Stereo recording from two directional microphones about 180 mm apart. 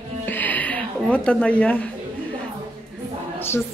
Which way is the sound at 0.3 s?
10° left (ahead or behind).